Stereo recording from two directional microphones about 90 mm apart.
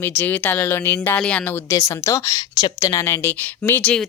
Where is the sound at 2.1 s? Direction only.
35° left (ahead or behind).